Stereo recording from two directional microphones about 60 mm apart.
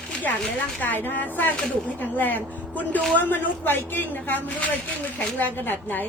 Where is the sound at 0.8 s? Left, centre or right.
Left.